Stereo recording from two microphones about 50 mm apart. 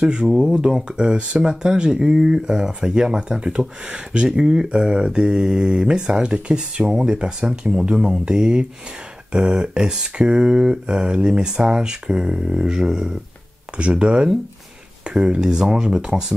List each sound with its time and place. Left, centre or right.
0.0 s speech: centre